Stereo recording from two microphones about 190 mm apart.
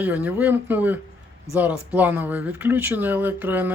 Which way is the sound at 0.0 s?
10° right (ahead or behind).